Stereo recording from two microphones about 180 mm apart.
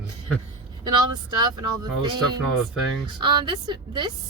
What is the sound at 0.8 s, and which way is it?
Speech, 25° right (ahead or behind).